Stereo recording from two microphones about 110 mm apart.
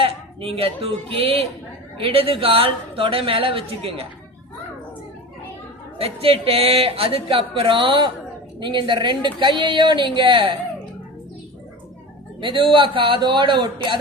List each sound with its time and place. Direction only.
0.0 s speech: 60° right (ahead or behind)
6.0 s a woman's voice: 65° right (ahead or behind)
12.4 s a woman's voice: 50° right (ahead or behind)